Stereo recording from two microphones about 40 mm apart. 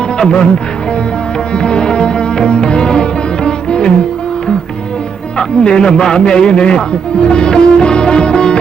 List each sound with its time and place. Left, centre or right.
0.2 s speech: left
1.5 s music: left
5.4 s a man's voice: left